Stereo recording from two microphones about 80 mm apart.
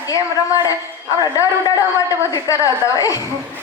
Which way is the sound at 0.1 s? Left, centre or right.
Left.